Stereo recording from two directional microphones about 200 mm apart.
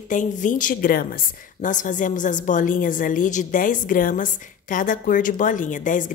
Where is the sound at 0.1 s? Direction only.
40° left (ahead or behind).